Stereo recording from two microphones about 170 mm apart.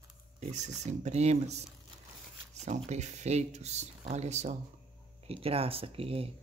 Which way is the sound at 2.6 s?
40° right (ahead or behind).